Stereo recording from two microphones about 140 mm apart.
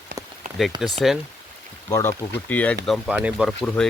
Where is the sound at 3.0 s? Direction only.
10° right (ahead or behind).